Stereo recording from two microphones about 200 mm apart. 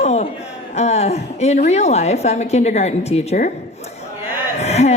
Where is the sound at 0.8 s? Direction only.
35° left (ahead or behind).